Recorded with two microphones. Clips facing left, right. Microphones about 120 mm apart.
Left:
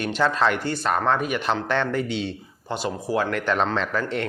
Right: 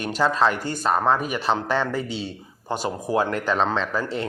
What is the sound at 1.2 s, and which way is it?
Speech, 35° right (ahead or behind).